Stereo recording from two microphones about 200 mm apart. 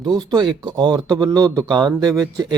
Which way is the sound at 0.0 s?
20° right (ahead or behind).